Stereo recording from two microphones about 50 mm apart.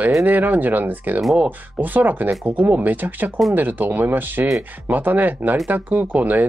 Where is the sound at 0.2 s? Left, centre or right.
Right.